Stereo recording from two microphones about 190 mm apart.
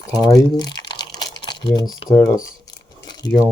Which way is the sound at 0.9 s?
20° left (ahead or behind).